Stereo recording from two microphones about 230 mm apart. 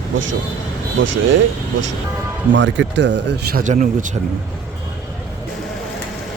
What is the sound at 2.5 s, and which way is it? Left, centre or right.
Speech, right.